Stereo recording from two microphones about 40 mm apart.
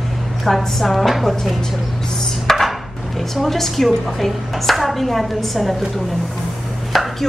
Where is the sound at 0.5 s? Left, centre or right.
Centre.